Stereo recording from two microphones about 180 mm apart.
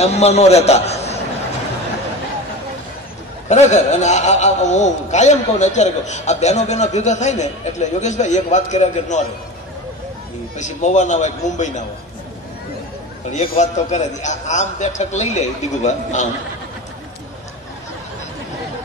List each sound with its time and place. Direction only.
0.0 s a man's voice: 35° left (ahead or behind)
3.4 s a man's voice: 40° left (ahead or behind)
10.6 s a man's voice: 40° left (ahead or behind)
13.6 s a man's voice: 40° left (ahead or behind)